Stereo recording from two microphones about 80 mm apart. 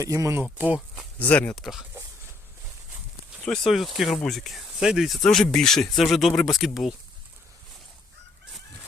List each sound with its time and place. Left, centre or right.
0.0 s speech: right
0.6 s speech: centre
1.2 s speech: centre
1.5 s speech: centre
3.4 s speech: centre
3.8 s speech: centre